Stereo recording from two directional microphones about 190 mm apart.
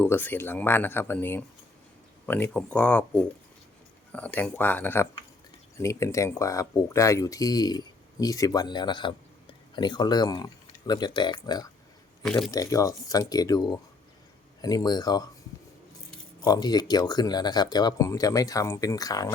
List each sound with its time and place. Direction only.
0.0 s speech: 10° left (ahead or behind)
12.2 s speech: centre (ahead or behind)
12.5 s speech: 20° left (ahead or behind)
16.4 s speech: 20° left (ahead or behind)